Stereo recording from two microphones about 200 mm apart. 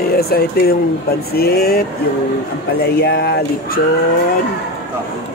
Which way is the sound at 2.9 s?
55° left (ahead or behind).